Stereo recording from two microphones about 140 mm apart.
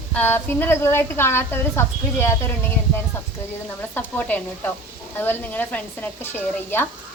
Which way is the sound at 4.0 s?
15° left (ahead or behind).